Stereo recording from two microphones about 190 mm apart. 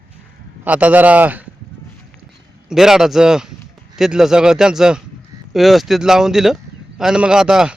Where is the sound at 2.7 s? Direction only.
Centre (ahead or behind).